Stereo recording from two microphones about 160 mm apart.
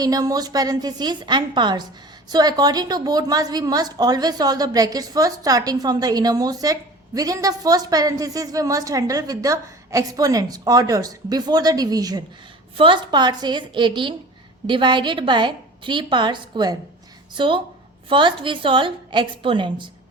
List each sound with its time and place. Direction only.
0.0 s a woman's voice: 25° right (ahead or behind)